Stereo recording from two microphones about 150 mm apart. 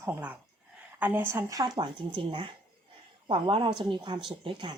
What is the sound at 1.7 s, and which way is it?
Speech, 35° right (ahead or behind).